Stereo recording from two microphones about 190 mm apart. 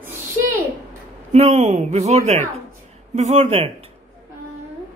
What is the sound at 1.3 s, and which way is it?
Speech, 35° right (ahead or behind).